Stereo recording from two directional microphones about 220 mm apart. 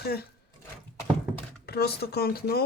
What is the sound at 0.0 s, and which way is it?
Speech, 45° left (ahead or behind).